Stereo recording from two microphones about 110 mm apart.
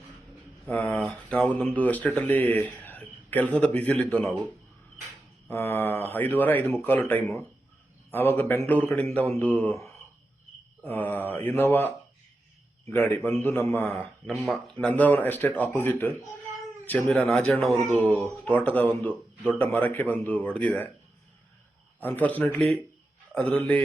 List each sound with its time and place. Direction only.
0.7 s speech: 15° left (ahead or behind)
5.5 s speech: 20° left (ahead or behind)
10.8 s speech: 15° left (ahead or behind)
17.2 s speech: 5° left (ahead or behind)
18.4 s speech: 15° left (ahead or behind)
22.0 s speech: 15° left (ahead or behind)